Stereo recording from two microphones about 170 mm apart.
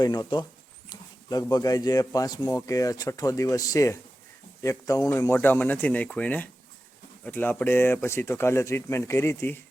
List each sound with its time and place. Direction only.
0.0 s speech: 25° left (ahead or behind)